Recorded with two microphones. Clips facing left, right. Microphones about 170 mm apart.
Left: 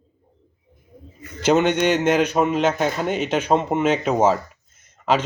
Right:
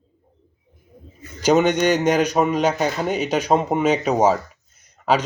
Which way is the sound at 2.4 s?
10° right (ahead or behind).